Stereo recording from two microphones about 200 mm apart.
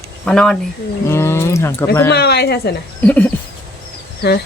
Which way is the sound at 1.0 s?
15° left (ahead or behind).